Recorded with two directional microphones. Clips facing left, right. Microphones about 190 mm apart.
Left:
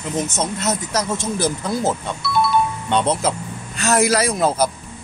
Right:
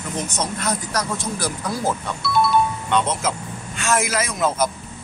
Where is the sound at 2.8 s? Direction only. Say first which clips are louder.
Left 2 dB; 30° left (ahead or behind).